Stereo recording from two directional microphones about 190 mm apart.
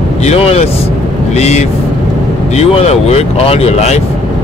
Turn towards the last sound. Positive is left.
turn(degrees=35)  # may be behind; listen again after turning